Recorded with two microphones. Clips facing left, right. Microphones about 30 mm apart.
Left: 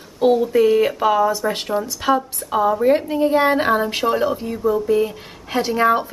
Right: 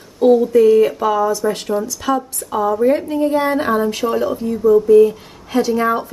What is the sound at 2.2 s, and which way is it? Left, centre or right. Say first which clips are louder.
A woman's voice: even; centre.